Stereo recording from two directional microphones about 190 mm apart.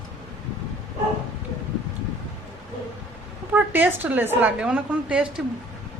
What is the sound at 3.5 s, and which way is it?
A woman's voice, 10° right (ahead or behind).